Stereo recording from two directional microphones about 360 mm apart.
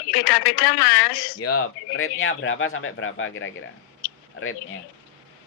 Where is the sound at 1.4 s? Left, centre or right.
Left.